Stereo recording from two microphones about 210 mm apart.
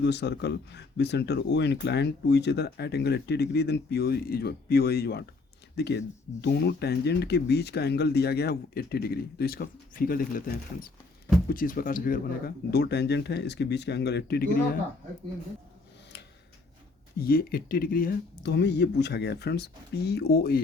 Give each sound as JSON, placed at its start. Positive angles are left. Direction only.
{"t": 0.0, "sound": "speech", "side_deg": 55}
{"t": 17.2, "sound": "speech", "side_deg": 45}